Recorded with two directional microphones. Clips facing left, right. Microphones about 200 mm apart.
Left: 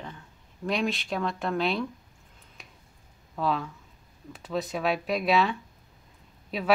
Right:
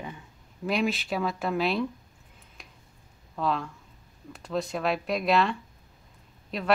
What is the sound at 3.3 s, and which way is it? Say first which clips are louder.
A woman's voice: even; centre (ahead or behind).